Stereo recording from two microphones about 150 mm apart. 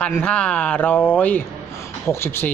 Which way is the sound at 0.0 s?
10° left (ahead or behind).